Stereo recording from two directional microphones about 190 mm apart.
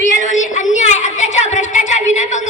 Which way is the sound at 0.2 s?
40° left (ahead or behind).